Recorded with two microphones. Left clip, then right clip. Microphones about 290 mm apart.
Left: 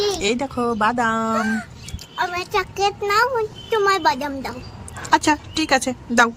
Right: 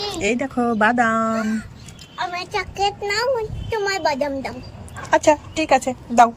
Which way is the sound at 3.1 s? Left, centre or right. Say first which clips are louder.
Left 3 dB; left.